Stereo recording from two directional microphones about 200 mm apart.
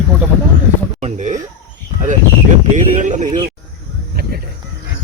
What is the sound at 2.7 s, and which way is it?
Speech, 40° right (ahead or behind).